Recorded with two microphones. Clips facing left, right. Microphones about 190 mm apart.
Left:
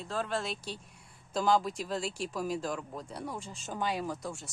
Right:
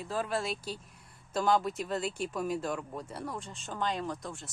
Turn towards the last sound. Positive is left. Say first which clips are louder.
# left 1 dB
turn(degrees=0)  # may be behind; listen again after turning